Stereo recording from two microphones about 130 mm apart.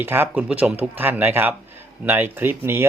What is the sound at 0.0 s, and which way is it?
Speech, 15° right (ahead or behind).